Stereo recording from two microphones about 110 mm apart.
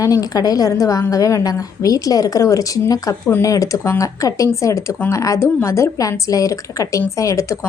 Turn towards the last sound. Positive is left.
turn(degrees=30)  # may be behind; listen again after turning